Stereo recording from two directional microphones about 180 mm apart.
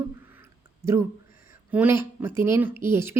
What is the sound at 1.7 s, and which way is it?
Speech, 10° right (ahead or behind).